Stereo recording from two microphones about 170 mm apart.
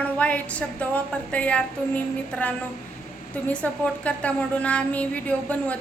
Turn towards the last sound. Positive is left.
turn(degrees=5)  # may be behind; listen again after turning